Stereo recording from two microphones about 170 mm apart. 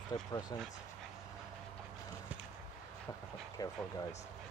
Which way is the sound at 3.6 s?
20° left (ahead or behind).